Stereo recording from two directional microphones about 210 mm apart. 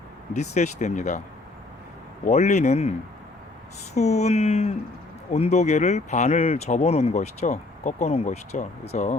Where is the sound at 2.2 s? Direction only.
35° left (ahead or behind).